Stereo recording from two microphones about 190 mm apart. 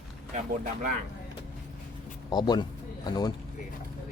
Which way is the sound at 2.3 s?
25° left (ahead or behind).